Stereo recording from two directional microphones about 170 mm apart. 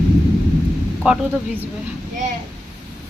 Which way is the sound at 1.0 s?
5° right (ahead or behind).